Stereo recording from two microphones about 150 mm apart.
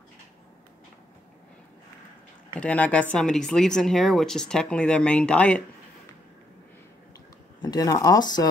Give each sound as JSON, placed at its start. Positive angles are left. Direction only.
{"t": 2.6, "sound": "speech", "side_deg": 10}
{"t": 7.6, "sound": "speech", "side_deg": 25}